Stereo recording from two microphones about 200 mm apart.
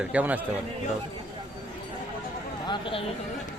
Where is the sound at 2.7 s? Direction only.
25° left (ahead or behind).